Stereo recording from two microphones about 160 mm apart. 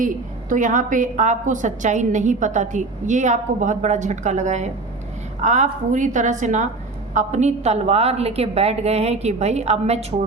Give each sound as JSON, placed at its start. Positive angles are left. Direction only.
{"t": 0.0, "sound": "a woman's voice", "side_deg": -55}